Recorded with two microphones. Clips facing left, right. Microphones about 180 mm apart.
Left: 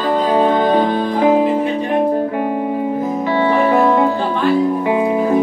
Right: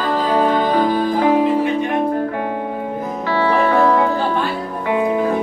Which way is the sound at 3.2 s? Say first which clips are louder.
Left 1 dB; 25° left (ahead or behind).